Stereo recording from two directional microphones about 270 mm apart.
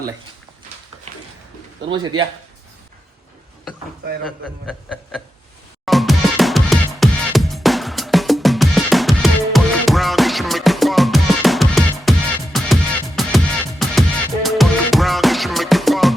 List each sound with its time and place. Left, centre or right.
1.9 s a man's voice: centre
4.3 s a sound: centre
5.8 s music: centre